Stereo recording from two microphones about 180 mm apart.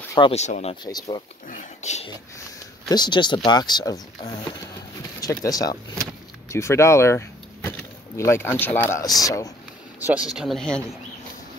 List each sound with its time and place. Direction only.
0.3 s speech: 40° left (ahead or behind)
2.9 s speech: 25° left (ahead or behind)
9.9 s speech: 10° right (ahead or behind)